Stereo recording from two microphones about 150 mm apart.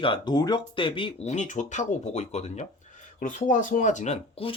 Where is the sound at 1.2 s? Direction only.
50° left (ahead or behind).